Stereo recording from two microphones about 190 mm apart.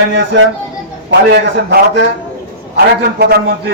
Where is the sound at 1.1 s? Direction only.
60° right (ahead or behind).